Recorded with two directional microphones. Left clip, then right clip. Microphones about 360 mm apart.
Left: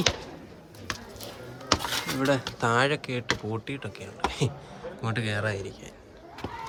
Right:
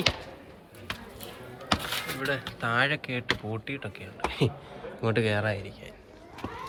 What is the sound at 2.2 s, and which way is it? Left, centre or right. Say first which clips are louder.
Speech: left 6 dB; centre.